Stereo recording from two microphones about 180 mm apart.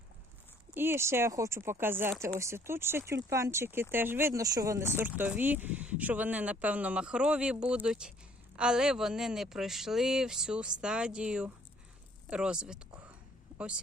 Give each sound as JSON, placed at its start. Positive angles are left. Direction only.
{"t": 0.7, "sound": "speech", "side_deg": -10}